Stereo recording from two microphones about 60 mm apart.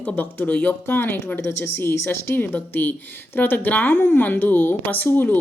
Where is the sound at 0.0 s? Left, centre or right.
Left.